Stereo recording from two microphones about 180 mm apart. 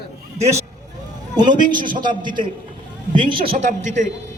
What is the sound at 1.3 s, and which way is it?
Speech, 25° right (ahead or behind).